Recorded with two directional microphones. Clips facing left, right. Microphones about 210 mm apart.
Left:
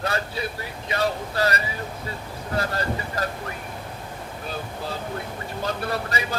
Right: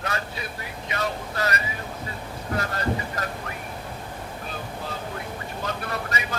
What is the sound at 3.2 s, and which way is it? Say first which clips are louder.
Speech: left 3 dB; 30° left (ahead or behind).